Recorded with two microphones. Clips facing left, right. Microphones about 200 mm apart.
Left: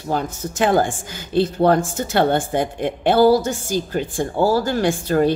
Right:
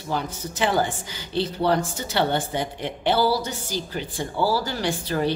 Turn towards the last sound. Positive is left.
turn(degrees=50)  # may be behind; listen again after turning